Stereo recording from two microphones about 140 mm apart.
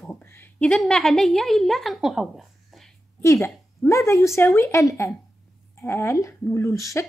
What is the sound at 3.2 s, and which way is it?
A woman's voice, 20° left (ahead or behind).